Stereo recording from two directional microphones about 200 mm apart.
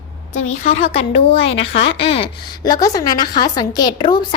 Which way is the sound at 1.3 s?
70° left (ahead or behind).